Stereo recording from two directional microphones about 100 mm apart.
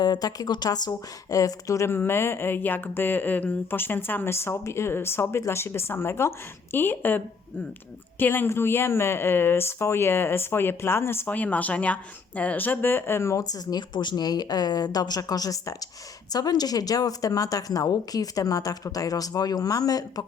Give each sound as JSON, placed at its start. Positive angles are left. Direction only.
{"t": 0.0, "sound": "speech", "side_deg": 40}
{"t": 8.2, "sound": "a woman's voice", "side_deg": 20}